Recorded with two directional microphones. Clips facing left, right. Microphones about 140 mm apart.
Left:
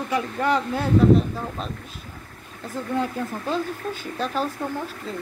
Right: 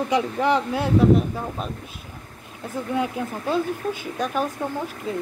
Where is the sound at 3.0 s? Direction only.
10° right (ahead or behind).